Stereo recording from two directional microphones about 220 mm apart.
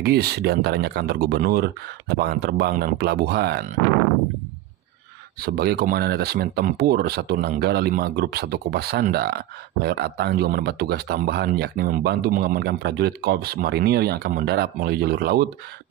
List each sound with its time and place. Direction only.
0.0 s speech: 45° right (ahead or behind)
5.4 s speech: 45° right (ahead or behind)